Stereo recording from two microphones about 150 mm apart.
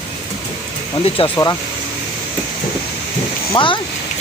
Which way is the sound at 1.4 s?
15° left (ahead or behind).